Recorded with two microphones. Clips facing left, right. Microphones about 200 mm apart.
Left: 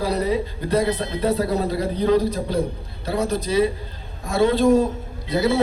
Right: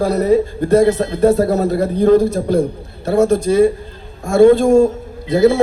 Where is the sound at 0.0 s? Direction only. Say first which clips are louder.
Right 8 dB; 50° right (ahead or behind).